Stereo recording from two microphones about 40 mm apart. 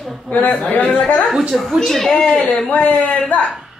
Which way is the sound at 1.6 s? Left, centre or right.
Centre.